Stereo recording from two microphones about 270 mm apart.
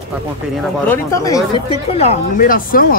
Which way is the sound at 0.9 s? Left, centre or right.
Centre.